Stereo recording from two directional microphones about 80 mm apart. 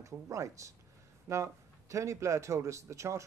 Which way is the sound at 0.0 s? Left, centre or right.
Right.